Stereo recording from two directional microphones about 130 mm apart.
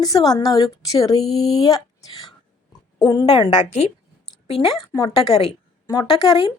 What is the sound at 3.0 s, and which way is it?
Speech, 30° left (ahead or behind).